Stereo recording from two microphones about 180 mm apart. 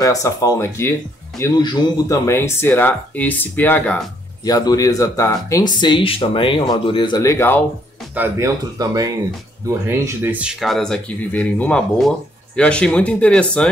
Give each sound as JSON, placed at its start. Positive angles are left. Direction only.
{"t": 0.0, "sound": "speech", "side_deg": 20}
{"t": 8.1, "sound": "speech", "side_deg": -10}
{"t": 8.7, "sound": "speech", "side_deg": -20}